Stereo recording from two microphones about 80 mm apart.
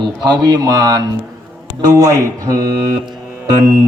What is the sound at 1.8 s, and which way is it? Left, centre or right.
Speech, right.